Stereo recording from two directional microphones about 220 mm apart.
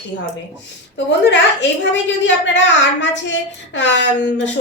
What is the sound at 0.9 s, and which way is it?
A woman's voice, 50° left (ahead or behind).